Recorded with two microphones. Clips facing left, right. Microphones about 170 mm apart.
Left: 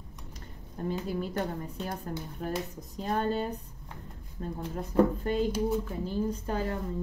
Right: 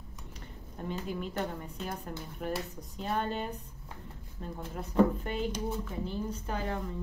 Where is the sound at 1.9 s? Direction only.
40° left (ahead or behind).